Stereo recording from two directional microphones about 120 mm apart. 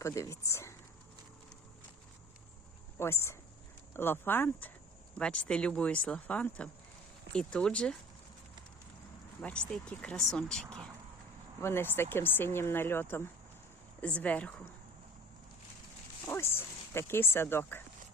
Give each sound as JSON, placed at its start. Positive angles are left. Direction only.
{"t": 0.0, "sound": "speech", "side_deg": 25}
{"t": 3.0, "sound": "speech", "side_deg": 20}
{"t": 9.4, "sound": "speech", "side_deg": 10}
{"t": 11.6, "sound": "speech", "side_deg": 20}
{"t": 16.2, "sound": "a sound", "side_deg": 20}